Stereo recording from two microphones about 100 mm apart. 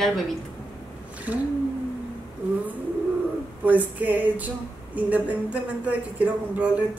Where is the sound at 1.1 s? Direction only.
15° right (ahead or behind).